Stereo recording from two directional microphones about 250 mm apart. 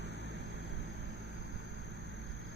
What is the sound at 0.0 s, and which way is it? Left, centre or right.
Vehicle, right.